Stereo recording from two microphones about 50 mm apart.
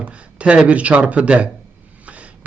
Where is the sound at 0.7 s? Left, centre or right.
Right.